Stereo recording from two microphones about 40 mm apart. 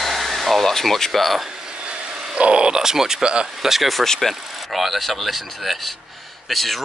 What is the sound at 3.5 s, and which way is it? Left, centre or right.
Speech, centre.